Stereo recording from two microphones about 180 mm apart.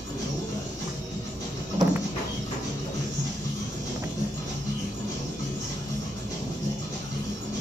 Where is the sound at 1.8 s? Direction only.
25° right (ahead or behind).